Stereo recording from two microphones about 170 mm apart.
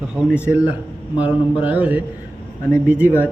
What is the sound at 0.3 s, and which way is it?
Speech, 10° right (ahead or behind).